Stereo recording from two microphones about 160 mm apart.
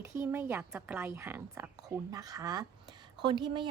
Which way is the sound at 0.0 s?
15° right (ahead or behind).